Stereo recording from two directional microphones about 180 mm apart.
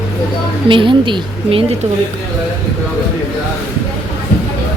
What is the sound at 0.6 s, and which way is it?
A woman's voice, 30° right (ahead or behind).